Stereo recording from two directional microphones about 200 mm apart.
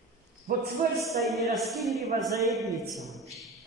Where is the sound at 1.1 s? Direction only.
Centre (ahead or behind).